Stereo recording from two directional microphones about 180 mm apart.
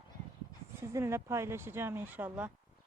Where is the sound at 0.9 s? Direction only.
15° right (ahead or behind).